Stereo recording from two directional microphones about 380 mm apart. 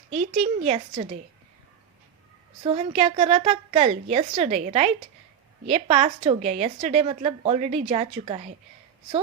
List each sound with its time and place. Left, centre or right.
0.4 s a woman's voice: centre
2.6 s a woman's voice: centre